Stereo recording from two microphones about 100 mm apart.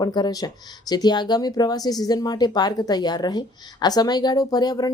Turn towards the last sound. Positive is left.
turn(degrees=40)  # may be behind; listen again after turning